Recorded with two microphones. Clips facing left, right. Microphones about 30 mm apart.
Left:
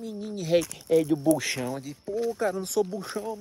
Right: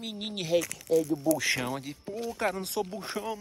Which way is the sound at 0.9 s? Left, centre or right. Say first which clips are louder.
Left 4 dB; left.